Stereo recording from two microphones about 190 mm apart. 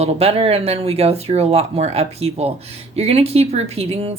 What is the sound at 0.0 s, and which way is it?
Speech, 30° right (ahead or behind).